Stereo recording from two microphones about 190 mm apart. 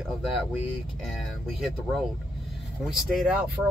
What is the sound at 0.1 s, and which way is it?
Speech, centre (ahead or behind).